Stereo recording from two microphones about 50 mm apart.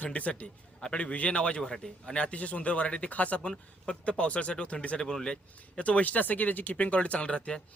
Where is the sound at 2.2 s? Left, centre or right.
Left.